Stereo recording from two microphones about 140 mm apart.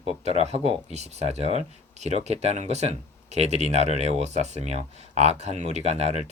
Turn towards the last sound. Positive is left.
turn(degrees=-50)  # may be behind; listen again after turning